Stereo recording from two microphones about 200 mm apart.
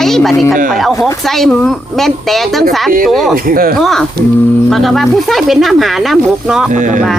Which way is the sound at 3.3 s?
45° right (ahead or behind).